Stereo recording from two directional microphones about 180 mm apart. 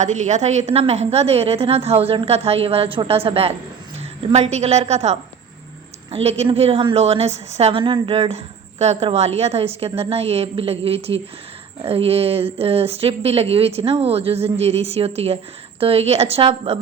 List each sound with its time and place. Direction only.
0.0 s a woman's voice: 40° right (ahead or behind)